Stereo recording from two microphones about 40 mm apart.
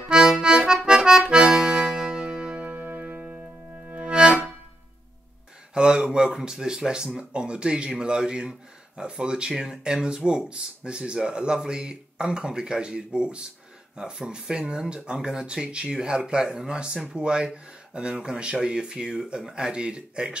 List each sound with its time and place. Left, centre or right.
0.1 s accordion: right
1.8 s music: right
2.6 s music: right
5.8 s speech: centre